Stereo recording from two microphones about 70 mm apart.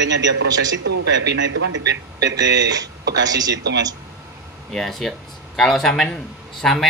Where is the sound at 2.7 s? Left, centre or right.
Right.